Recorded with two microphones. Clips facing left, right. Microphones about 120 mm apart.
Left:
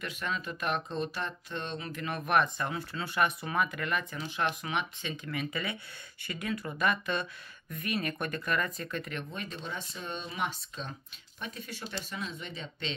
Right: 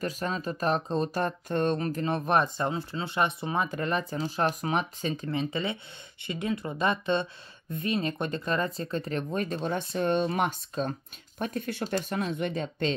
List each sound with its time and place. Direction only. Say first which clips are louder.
0.0 s speech: right 5 dB; 35° right (ahead or behind)
9.3 s speech: right 10 dB; 45° right (ahead or behind)